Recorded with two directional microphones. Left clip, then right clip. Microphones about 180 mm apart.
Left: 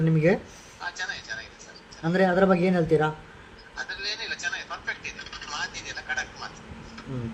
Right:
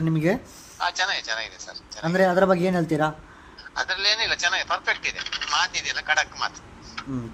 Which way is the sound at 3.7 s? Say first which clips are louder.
Right 9 dB; 50° right (ahead or behind).